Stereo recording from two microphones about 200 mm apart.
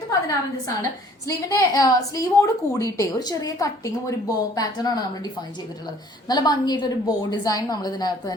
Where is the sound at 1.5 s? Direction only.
15° left (ahead or behind).